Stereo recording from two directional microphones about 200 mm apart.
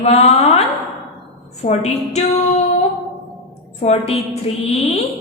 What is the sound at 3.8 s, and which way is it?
Speech, 30° left (ahead or behind).